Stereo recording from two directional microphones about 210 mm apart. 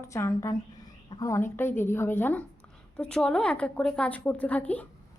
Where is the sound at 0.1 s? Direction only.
15° left (ahead or behind).